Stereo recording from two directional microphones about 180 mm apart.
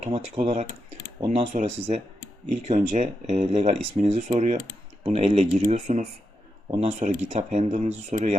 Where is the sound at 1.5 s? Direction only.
40° right (ahead or behind).